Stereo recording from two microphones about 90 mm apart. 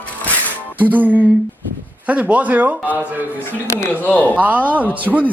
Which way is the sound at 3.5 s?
20° left (ahead or behind).